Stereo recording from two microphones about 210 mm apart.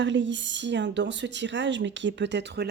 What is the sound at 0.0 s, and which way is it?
Speech, 60° right (ahead or behind).